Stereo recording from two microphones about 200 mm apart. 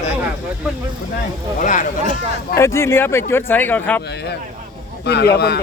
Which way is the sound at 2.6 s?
15° left (ahead or behind).